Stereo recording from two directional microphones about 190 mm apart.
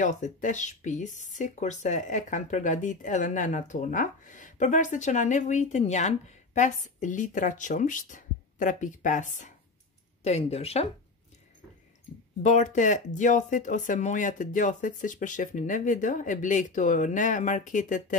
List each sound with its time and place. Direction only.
0.0 s speech: 40° left (ahead or behind)
12.4 s speech: 40° left (ahead or behind)